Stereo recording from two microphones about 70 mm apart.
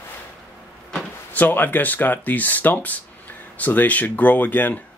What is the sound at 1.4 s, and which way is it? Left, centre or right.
Speech, left.